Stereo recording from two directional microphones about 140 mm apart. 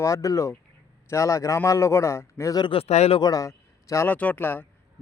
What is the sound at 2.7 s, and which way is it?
Speech, 45° left (ahead or behind).